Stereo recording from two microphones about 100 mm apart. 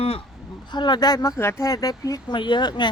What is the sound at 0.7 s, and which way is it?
Speech, 45° left (ahead or behind).